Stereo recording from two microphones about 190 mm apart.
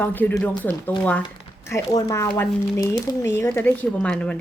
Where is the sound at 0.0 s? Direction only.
10° left (ahead or behind).